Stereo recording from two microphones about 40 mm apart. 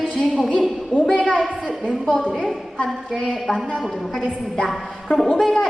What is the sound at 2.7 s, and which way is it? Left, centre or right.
Speech, centre.